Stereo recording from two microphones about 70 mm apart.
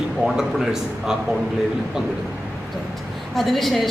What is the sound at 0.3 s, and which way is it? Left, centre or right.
Speech, centre.